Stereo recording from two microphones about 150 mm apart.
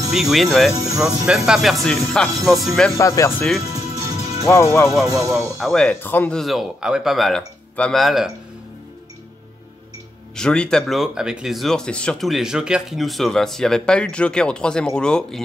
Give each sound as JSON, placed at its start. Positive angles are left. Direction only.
{"t": 0.1, "sound": "speech", "side_deg": 0}
{"t": 3.0, "sound": "speech", "side_deg": 20}
{"t": 3.7, "sound": "music", "side_deg": -25}
{"t": 4.5, "sound": "speech", "side_deg": 20}
{"t": 5.0, "sound": "speech", "side_deg": -20}
{"t": 5.6, "sound": "speech", "side_deg": 0}
{"t": 5.9, "sound": "speech", "side_deg": 10}
{"t": 10.3, "sound": "speech", "side_deg": 5}